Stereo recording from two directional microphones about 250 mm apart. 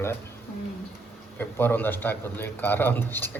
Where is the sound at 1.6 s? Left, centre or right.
Centre.